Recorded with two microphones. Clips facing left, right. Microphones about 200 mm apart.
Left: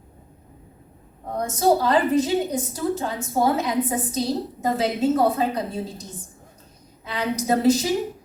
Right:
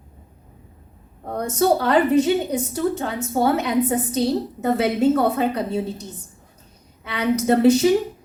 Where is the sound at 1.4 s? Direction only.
65° right (ahead or behind).